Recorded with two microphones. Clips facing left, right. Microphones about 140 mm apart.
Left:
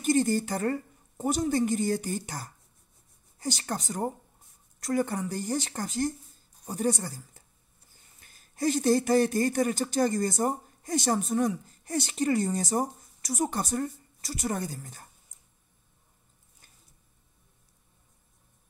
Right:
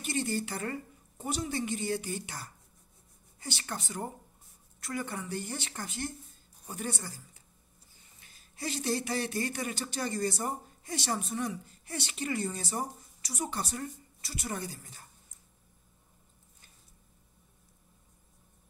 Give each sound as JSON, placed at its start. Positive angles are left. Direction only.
{"t": 0.0, "sound": "a woman's voice", "side_deg": 45}